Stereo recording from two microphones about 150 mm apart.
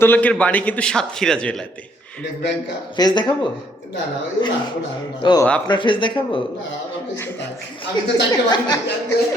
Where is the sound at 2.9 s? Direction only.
30° left (ahead or behind).